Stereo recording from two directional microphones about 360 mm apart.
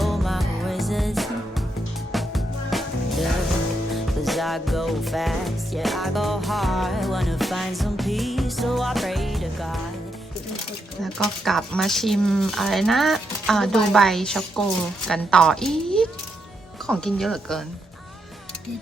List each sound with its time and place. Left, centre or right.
0.0 s music: centre
11.0 s speech: centre